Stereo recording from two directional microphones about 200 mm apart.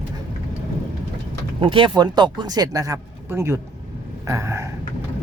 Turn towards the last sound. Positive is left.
turn(degrees=-15)  # may be behind; listen again after turning